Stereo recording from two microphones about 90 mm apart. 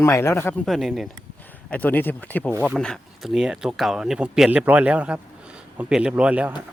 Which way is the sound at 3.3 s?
5° right (ahead or behind).